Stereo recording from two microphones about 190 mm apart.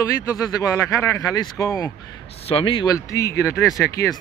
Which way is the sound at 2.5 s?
30° left (ahead or behind).